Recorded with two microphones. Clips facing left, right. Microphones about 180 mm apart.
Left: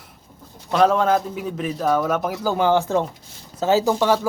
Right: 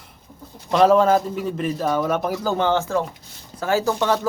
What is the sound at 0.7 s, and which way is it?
A man's voice, centre (ahead or behind).